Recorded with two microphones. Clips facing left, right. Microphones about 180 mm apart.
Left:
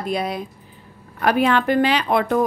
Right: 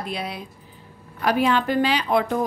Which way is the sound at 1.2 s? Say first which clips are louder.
Left 2 dB; 60° left (ahead or behind).